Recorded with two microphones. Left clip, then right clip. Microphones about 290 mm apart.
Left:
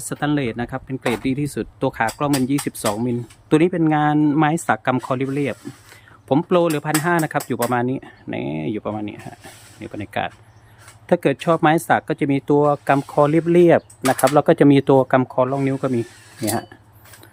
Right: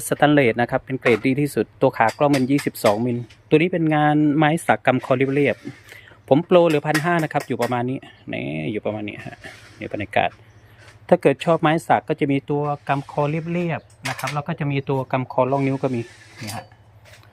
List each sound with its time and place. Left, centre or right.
0.1 s speech: centre